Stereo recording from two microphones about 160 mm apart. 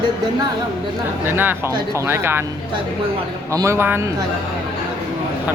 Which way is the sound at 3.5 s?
20° right (ahead or behind).